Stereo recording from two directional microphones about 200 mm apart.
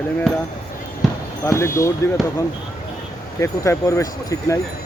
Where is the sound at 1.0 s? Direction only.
Centre (ahead or behind).